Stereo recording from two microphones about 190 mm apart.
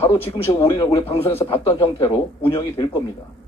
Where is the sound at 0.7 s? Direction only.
25° left (ahead or behind).